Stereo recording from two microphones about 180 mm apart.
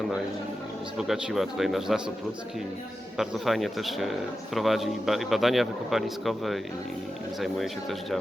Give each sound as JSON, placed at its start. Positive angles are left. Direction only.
{"t": 0.9, "sound": "speech", "side_deg": 0}
{"t": 3.2, "sound": "speech", "side_deg": 0}